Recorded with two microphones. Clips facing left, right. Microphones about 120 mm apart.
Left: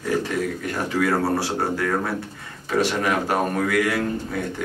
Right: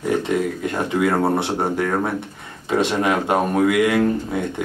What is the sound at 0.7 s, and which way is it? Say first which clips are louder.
Speech: right 2 dB; 25° right (ahead or behind).